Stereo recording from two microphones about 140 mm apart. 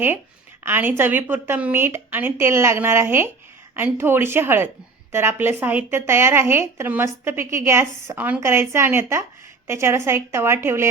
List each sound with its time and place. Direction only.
0.6 s a woman's voice: 15° right (ahead or behind)